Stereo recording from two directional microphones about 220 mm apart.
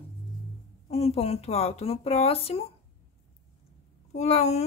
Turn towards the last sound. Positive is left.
turn(degrees=30)  # may be behind; listen again after turning